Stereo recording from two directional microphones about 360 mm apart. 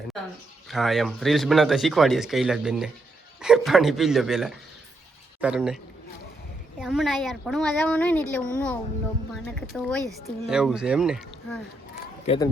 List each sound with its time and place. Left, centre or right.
0.7 s speech: centre
12.2 s speech: centre